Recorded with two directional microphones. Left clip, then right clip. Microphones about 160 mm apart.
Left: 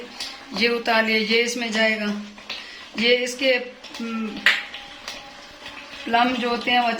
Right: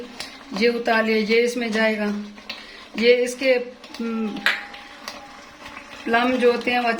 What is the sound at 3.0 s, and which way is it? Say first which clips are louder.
Speech: right 2 dB; 75° right (ahead or behind).